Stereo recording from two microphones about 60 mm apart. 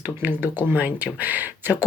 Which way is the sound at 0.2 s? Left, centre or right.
Right.